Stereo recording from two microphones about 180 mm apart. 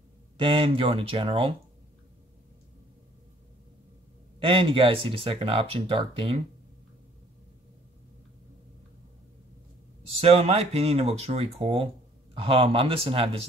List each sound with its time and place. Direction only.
0.4 s speech: 30° right (ahead or behind)
4.4 s speech: 30° right (ahead or behind)
10.2 s speech: 35° right (ahead or behind)